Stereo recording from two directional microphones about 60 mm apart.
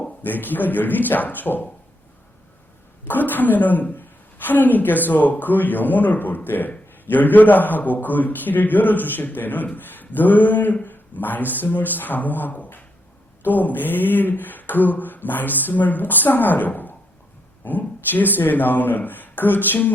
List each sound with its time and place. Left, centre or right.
0.2 s a woman's voice: left
3.1 s a woman's voice: left